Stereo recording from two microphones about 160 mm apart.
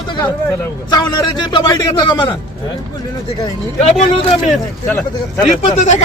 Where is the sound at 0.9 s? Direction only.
25° left (ahead or behind).